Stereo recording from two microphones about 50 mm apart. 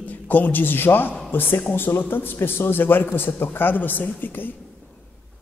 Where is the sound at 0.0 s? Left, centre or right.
Left.